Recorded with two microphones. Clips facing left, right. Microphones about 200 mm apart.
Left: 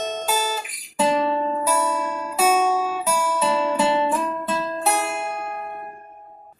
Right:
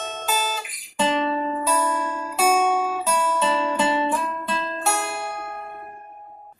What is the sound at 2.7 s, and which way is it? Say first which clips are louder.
Guitar: even; 10° left (ahead or behind).